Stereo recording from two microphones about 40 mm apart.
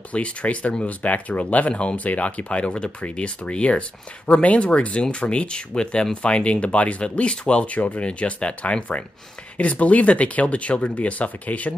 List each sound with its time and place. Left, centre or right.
0.1 s speech: left
1.7 s speech: left
2.0 s speech: left